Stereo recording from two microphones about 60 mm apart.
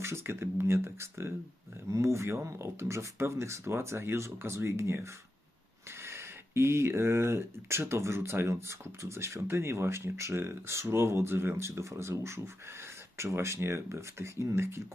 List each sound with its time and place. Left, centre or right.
0.0 s speech: right
1.9 s speech: right